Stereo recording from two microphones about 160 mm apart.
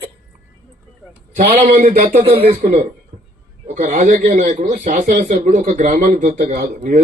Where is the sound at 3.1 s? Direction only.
45° right (ahead or behind).